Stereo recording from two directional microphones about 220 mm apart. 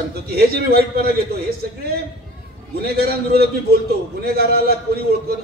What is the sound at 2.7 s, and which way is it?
A man's voice, 45° right (ahead or behind).